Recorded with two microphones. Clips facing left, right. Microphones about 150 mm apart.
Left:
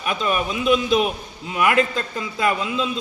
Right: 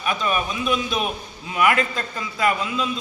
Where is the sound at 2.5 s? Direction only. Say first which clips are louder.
Left 1 dB; 20° left (ahead or behind).